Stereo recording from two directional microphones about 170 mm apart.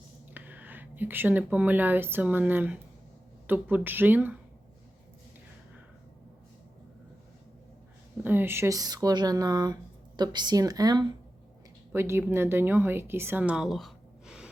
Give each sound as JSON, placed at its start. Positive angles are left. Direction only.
{"t": 0.3, "sound": "speech", "side_deg": -10}
{"t": 8.2, "sound": "speech", "side_deg": -10}